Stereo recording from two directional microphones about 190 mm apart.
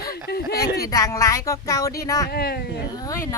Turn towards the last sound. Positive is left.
turn(degrees=15)  # may be behind; listen again after turning